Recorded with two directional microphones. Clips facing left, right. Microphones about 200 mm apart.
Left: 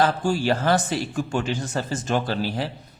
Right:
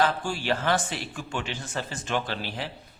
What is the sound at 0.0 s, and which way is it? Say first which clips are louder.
A man's voice: left 5 dB; 40° left (ahead or behind).